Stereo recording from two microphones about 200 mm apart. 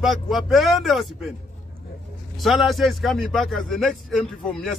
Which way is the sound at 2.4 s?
Centre (ahead or behind).